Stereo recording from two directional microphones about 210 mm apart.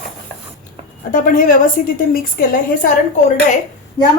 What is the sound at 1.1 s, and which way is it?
A woman's voice, 40° left (ahead or behind).